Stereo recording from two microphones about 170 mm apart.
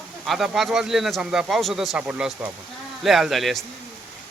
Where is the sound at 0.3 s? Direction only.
Centre (ahead or behind).